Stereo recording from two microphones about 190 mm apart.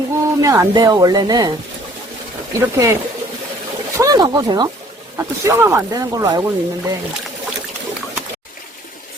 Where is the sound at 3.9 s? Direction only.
20° right (ahead or behind).